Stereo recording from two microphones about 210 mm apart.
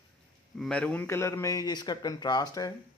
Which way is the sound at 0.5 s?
5° left (ahead or behind).